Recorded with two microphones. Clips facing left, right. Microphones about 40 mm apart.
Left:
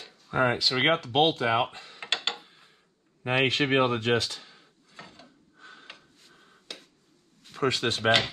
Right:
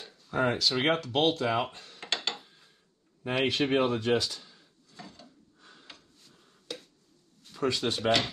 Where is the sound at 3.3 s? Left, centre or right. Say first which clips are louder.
Left 3 dB; left.